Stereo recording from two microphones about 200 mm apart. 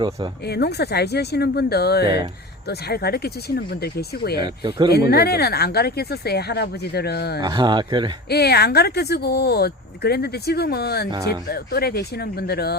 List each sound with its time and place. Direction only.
0.4 s speech: 55° left (ahead or behind)
4.4 s speech: 20° right (ahead or behind)
4.9 s speech: 50° left (ahead or behind)
7.4 s speech: 20° right (ahead or behind)
8.3 s speech: 55° left (ahead or behind)
11.1 s speech: 20° right (ahead or behind)
11.4 s speech: 50° left (ahead or behind)